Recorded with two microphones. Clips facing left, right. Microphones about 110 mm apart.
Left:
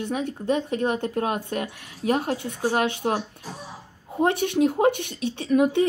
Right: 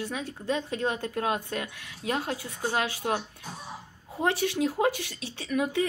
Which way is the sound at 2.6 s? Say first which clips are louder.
Left 5 dB; 35° left (ahead or behind).